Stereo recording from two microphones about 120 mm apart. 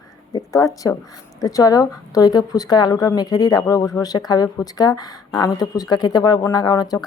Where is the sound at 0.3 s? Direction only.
30° left (ahead or behind).